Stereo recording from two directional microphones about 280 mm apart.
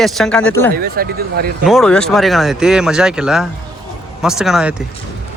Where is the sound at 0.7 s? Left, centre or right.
Right.